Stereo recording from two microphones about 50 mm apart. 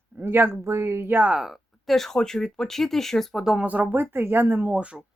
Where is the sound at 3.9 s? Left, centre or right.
Right.